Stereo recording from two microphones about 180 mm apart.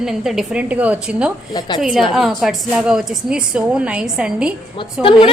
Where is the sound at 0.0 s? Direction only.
Centre (ahead or behind).